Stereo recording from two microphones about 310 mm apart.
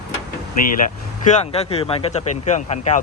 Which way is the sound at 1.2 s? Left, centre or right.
Left.